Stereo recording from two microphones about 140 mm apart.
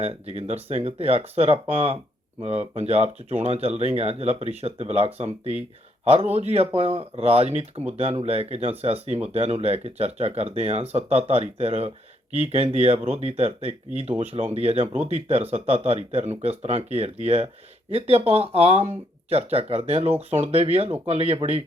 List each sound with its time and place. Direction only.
0.0 s speech: 45° right (ahead or behind)